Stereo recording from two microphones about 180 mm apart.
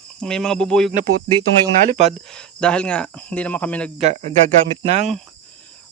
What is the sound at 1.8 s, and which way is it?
Speech, 40° right (ahead or behind).